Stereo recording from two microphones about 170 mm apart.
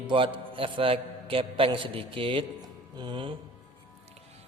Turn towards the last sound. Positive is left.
turn(degrees=-30)  # may be behind; listen again after turning